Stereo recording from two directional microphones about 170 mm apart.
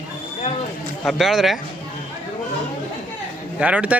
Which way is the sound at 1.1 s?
Centre (ahead or behind).